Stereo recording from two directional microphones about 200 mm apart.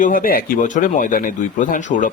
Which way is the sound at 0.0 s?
45° left (ahead or behind).